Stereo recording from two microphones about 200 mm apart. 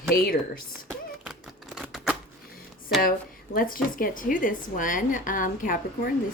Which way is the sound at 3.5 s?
45° left (ahead or behind).